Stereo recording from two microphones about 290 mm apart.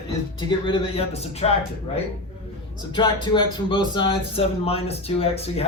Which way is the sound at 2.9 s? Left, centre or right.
Centre.